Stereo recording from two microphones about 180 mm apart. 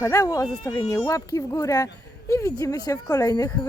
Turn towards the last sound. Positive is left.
turn(degrees=20)  # may be behind; listen again after turning